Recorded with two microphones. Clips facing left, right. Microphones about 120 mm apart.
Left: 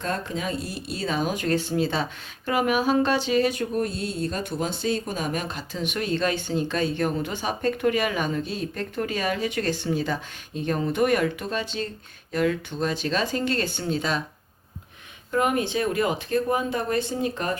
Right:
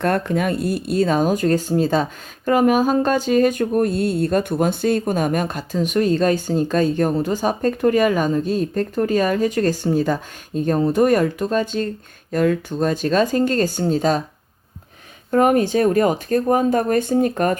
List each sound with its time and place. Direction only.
0.0 s speech: 60° right (ahead or behind); by 14.2 s 40° right (ahead or behind)
15.3 s speech: 45° right (ahead or behind)